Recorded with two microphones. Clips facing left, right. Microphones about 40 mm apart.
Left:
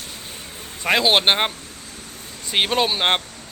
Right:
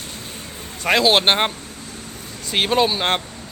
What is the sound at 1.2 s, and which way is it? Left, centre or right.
Vehicle, centre.